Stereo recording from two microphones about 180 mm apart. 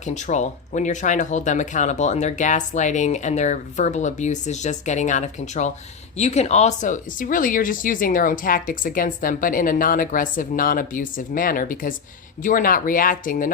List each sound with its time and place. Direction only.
0.0 s speech: 40° left (ahead or behind)